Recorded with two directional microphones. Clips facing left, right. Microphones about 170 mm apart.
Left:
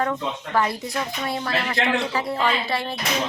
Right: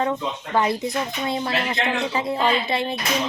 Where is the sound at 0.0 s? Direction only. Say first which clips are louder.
Right 1 dB; 20° right (ahead or behind).